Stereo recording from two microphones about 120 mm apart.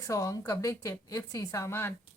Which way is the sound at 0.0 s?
30° left (ahead or behind).